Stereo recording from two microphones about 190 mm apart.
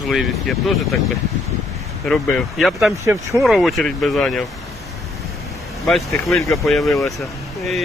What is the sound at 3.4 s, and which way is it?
Speech, centre (ahead or behind).